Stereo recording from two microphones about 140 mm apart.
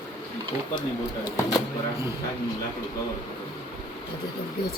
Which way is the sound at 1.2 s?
25° left (ahead or behind).